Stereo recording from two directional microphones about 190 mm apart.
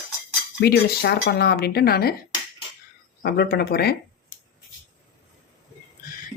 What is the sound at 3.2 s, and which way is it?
Speech, 55° left (ahead or behind).